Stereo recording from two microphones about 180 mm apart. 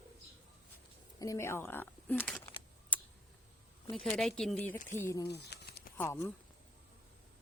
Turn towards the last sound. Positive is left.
turn(degrees=15)  # may be behind; listen again after turning